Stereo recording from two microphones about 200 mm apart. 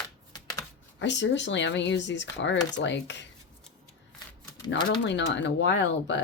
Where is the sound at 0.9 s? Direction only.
60° left (ahead or behind).